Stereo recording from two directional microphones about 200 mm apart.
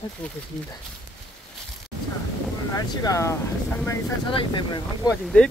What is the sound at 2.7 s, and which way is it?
Speech, 15° left (ahead or behind).